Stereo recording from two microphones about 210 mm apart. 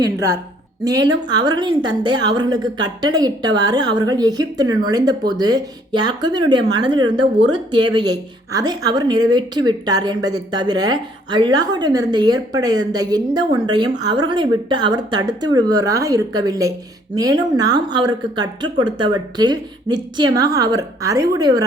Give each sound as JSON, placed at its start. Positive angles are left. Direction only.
{"t": 1.1, "sound": "a woman's voice", "side_deg": -20}